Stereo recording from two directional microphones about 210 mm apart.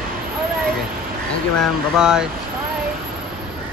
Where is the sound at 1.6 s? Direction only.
5° right (ahead or behind).